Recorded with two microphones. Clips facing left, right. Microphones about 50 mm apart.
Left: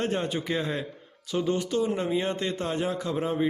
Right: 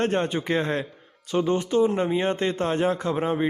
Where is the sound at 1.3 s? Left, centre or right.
Right.